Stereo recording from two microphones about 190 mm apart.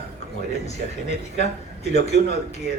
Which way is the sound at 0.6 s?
35° left (ahead or behind).